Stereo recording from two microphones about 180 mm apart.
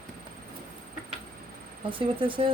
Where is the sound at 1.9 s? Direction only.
30° right (ahead or behind).